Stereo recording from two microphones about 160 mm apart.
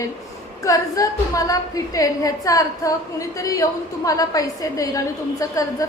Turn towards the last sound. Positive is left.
turn(degrees=20)  # may be behind; listen again after turning